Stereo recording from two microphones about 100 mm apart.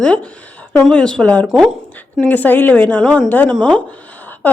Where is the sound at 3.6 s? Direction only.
10° left (ahead or behind).